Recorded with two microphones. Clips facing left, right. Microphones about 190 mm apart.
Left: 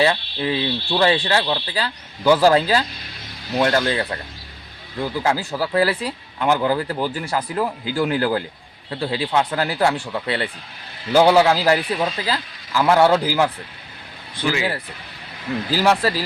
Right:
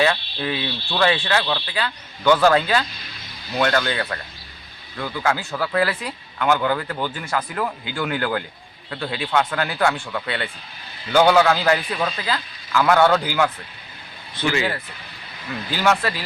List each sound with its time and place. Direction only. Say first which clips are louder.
0.0 s a man's voice: left 2 dB; 20° left (ahead or behind)
1.5 s a man's voice: left 2 dB; 20° left (ahead or behind)
1.7 s a man's voice: left 1 dB; 35° left (ahead or behind)
14.4 s speech: left 1 dB; 15° left (ahead or behind)
15.7 s speech: left 2 dB; 35° left (ahead or behind)